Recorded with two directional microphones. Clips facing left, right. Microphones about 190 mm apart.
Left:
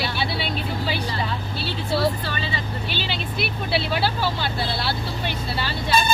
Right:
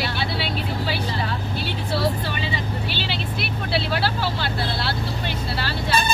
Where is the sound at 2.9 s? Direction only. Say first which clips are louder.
Even; centre (ahead or behind).